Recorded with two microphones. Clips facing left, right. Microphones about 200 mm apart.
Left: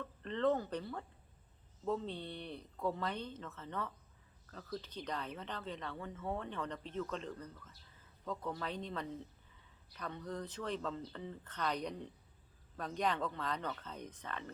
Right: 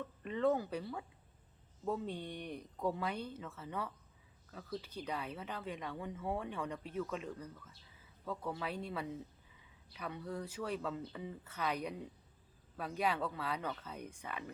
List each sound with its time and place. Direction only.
0.0 s speech: 10° right (ahead or behind)